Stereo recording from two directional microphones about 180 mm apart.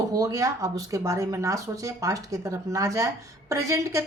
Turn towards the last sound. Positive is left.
turn(degrees=-15)  # may be behind; listen again after turning